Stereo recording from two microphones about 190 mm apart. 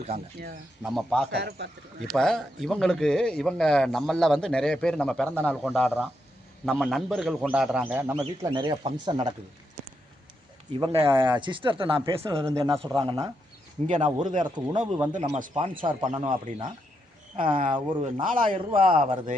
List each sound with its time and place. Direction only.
0.8 s speech: centre (ahead or behind)
1.3 s speech: 60° right (ahead or behind)
2.0 s speech: centre (ahead or behind)
8.4 s speech: 25° right (ahead or behind)
10.7 s speech: 25° right (ahead or behind)
12.5 s speech: 15° right (ahead or behind)
13.8 s speech: 40° right (ahead or behind)
15.7 s speech: 25° right (ahead or behind)
17.3 s speech: 45° right (ahead or behind)